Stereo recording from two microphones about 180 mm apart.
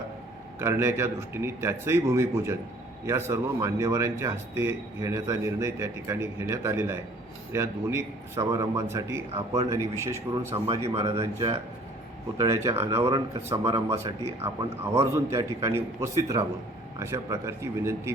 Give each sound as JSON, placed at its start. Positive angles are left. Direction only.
{"t": 0.6, "sound": "a man's voice", "side_deg": -15}
{"t": 12.6, "sound": "speech", "side_deg": -15}